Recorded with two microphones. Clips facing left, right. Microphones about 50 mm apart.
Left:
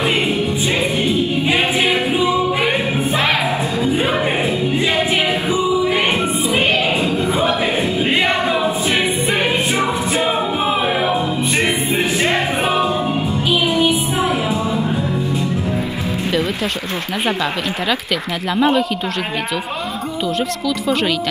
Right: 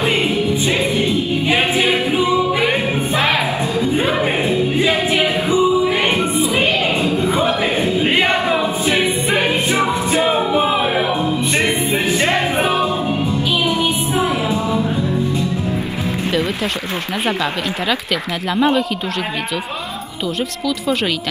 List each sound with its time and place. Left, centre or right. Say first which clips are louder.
1.8 s music: even; right
8.0 s choir: right 1 dB; centre
10.2 s music: right 3 dB; centre
14.1 s music: even; left
18.6 s speech: even; centre